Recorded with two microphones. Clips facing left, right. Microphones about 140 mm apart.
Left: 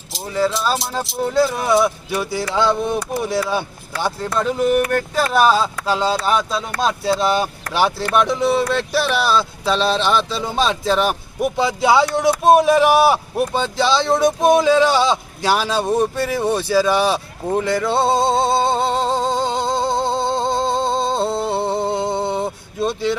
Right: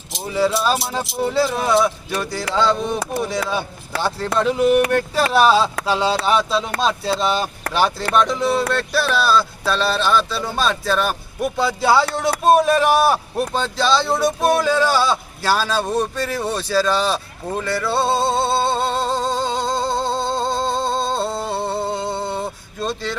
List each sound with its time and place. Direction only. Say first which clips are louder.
0.3 s speech: right 1 dB; 10° right (ahead or behind)
6.1 s speech: right 2 dB; 5° left (ahead or behind)